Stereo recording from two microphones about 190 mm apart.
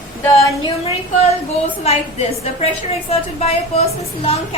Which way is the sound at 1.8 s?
35° left (ahead or behind).